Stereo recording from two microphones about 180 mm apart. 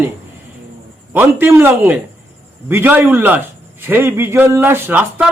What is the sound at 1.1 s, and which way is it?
A man's voice, 10° right (ahead or behind).